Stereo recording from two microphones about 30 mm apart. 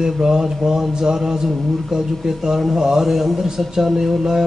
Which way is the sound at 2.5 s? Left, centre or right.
Centre.